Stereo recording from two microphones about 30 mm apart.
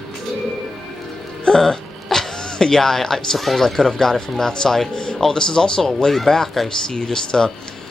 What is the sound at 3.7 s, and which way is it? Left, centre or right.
Speech, centre.